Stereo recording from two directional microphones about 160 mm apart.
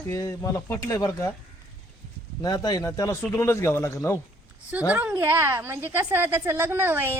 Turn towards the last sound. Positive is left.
turn(degrees=-15)  # may be behind; listen again after turning